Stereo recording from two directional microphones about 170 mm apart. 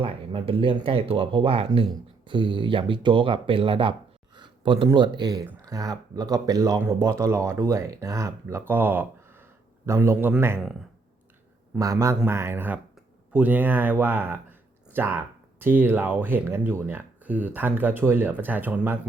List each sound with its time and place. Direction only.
0.0 s speech: 35° right (ahead or behind); by 10.6 s 10° right (ahead or behind)
10.6 s speech: centre (ahead or behind)
11.8 s speech: 20° right (ahead or behind)